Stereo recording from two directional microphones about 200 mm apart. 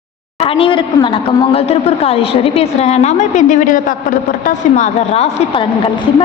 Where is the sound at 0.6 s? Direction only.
25° left (ahead or behind).